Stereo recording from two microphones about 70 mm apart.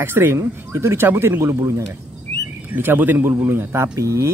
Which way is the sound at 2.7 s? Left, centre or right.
Right.